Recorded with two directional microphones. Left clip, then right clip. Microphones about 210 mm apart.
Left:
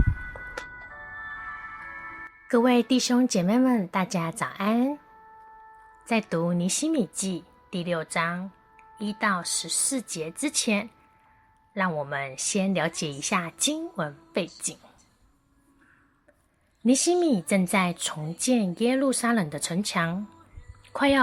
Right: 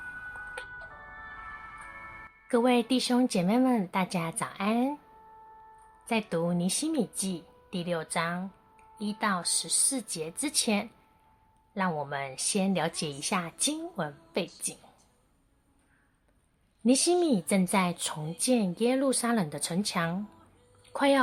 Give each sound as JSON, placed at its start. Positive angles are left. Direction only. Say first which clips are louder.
{"t": 0.6, "sound": "music", "louder": "left 4 dB", "side_deg": 20}
{"t": 2.5, "sound": "speech", "louder": "left 3 dB", "side_deg": 15}
{"t": 6.1, "sound": "speech", "louder": "left 3 dB", "side_deg": 15}
{"t": 16.8, "sound": "speech", "louder": "left 3 dB", "side_deg": 10}
{"t": 20.8, "sound": "a sound", "louder": "left 2 dB", "side_deg": 10}